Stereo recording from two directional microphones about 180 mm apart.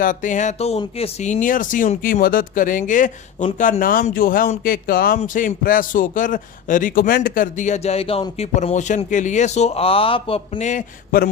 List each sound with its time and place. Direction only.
0.0 s speech: 45° left (ahead or behind)